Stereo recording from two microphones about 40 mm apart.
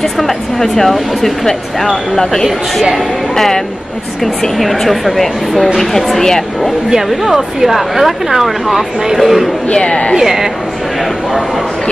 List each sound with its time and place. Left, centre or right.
0.0 s speech: centre
6.9 s speech: centre
9.7 s speech: left
10.1 s speech: centre